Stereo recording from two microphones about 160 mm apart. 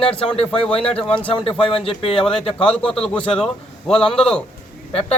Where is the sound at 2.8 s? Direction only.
5° left (ahead or behind).